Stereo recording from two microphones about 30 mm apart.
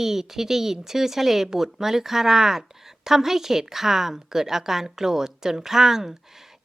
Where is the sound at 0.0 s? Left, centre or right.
Centre.